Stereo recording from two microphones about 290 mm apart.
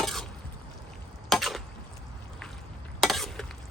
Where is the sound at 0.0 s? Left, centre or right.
Centre.